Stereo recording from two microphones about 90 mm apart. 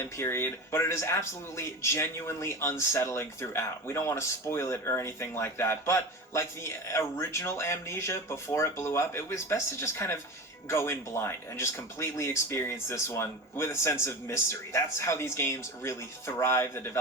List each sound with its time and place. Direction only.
0.0 s speech: 30° left (ahead or behind)